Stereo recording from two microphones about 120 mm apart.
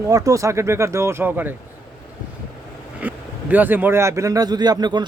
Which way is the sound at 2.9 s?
15° right (ahead or behind).